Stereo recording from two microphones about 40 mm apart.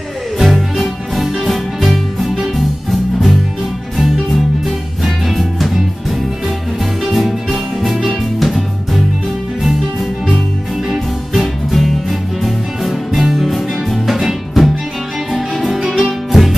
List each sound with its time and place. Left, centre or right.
0.4 s music: centre
10.9 s music: centre